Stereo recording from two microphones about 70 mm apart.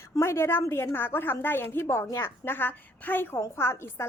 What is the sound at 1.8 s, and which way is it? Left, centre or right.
Speech, left.